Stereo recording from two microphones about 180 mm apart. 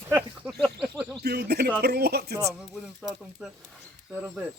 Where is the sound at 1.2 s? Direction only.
60° right (ahead or behind).